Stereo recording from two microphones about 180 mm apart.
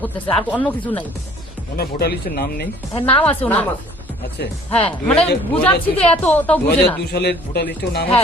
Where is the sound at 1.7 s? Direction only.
60° left (ahead or behind).